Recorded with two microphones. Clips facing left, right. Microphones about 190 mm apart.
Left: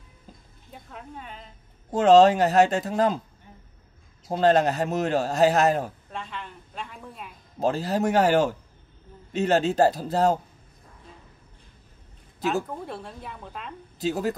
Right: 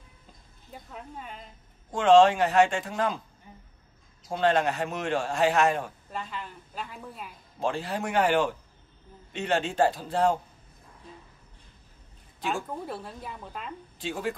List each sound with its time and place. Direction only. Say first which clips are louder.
0.7 s speech: left 1 dB; centre (ahead or behind)
1.9 s a man's voice: left 3 dB; 40° left (ahead or behind)
3.5 s a sound: even; 5° right (ahead or behind)
4.3 s a man's voice: left 4 dB; 35° left (ahead or behind)
6.1 s a woman's voice: right 3 dB; 5° right (ahead or behind)
7.6 s a man's voice: left 6 dB; 40° left (ahead or behind)
12.8 s a woman's voice: even; centre (ahead or behind)
13.9 s speech: left 6 dB; 40° left (ahead or behind)